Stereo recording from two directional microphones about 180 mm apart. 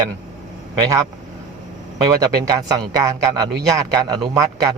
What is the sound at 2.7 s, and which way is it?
Speech, 20° right (ahead or behind).